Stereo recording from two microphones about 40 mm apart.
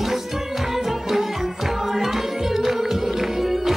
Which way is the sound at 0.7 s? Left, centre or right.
Centre.